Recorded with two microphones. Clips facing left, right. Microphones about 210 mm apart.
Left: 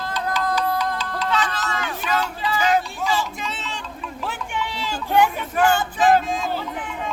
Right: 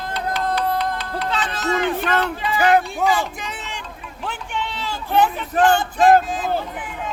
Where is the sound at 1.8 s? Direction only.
60° right (ahead or behind).